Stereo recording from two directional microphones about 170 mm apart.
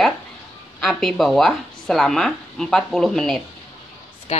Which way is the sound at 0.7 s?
Centre (ahead or behind).